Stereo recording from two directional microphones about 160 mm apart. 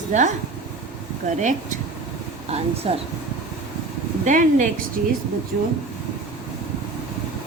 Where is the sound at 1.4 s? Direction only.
50° right (ahead or behind).